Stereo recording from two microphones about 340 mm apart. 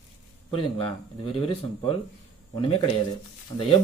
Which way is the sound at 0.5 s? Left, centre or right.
Centre.